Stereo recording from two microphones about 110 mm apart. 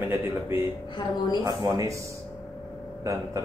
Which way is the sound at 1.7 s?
30° right (ahead or behind).